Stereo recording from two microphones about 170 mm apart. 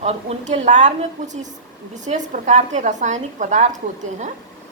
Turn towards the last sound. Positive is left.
turn(degrees=-45)  # may be behind; listen again after turning